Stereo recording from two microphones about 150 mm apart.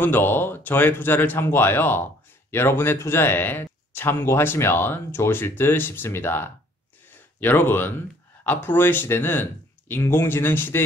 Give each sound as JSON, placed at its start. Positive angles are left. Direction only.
{"t": 0.0, "sound": "a man's voice", "side_deg": 15}